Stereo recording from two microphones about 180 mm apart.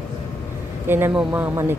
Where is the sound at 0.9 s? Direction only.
10° right (ahead or behind).